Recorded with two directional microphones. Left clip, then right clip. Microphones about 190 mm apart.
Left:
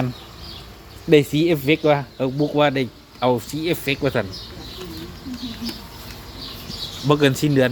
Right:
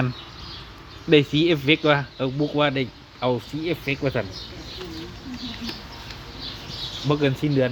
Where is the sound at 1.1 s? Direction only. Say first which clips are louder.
Left 2 dB; 5° left (ahead or behind).